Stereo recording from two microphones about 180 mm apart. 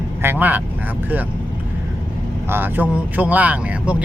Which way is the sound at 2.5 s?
10° right (ahead or behind).